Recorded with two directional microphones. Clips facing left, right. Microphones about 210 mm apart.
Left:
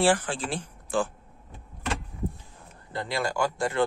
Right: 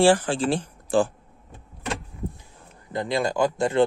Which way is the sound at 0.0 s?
30° right (ahead or behind).